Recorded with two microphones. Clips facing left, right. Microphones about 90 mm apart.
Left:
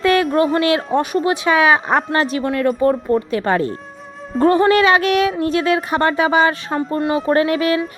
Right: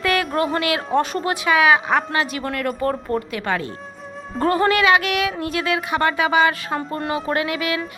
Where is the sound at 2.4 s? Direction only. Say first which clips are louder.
Left 6 dB; 25° left (ahead or behind).